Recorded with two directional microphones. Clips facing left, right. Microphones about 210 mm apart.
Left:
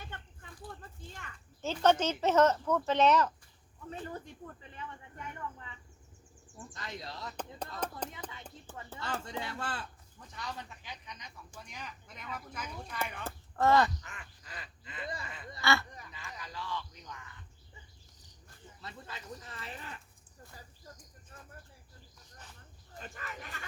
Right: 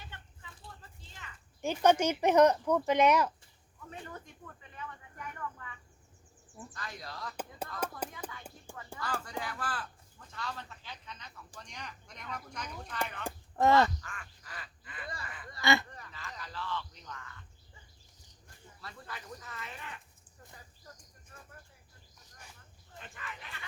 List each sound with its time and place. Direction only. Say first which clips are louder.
0.8 s a sound: left 5 dB; 50° left (ahead or behind)
1.6 s speech: right 1 dB; 10° right (ahead or behind)
3.8 s speech: left 4 dB; 30° left (ahead or behind)
6.7 s speech: left 2 dB; 20° left (ahead or behind)
7.8 s speech: right 1 dB; 10° right (ahead or behind)
9.0 s a man's voice: even; 25° left (ahead or behind); by 13.0 s 10° left (ahead or behind)
13.2 s speech: right 1 dB; 15° right (ahead or behind)
14.0 s quack: right 2 dB; 20° left (ahead or behind)
15.6 s speech: right 2 dB; 15° right (ahead or behind)
15.9 s a sound: right 1 dB; 15° left (ahead or behind)
18.8 s speech: even; 20° left (ahead or behind)
23.0 s speech: left 3 dB; 40° left (ahead or behind)